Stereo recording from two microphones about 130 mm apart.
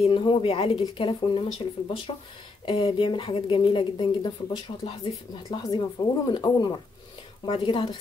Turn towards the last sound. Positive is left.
turn(degrees=40)  # may be behind; listen again after turning